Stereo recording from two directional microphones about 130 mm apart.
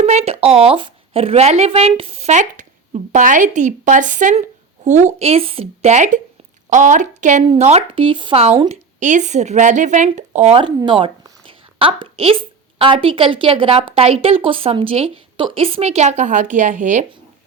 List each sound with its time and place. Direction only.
0.0 s a woman's voice: 60° right (ahead or behind)
7.4 s a woman's voice: 50° right (ahead or behind)
8.7 s a woman's voice: 70° right (ahead or behind)
10.8 s a woman's voice: 40° right (ahead or behind); by 17.1 s 70° right (ahead or behind)